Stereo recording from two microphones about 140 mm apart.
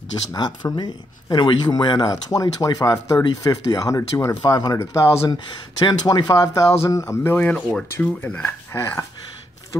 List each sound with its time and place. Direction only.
0.3 s speech: 30° left (ahead or behind)
7.3 s speech: 10° left (ahead or behind)